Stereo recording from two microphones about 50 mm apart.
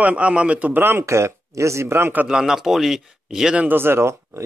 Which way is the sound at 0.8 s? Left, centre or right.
Right.